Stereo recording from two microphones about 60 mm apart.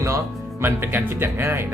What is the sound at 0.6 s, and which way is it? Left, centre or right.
Speech, right.